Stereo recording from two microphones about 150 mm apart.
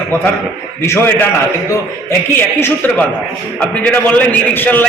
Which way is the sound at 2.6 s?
15° left (ahead or behind).